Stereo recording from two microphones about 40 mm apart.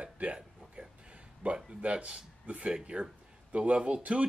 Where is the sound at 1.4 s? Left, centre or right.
Right.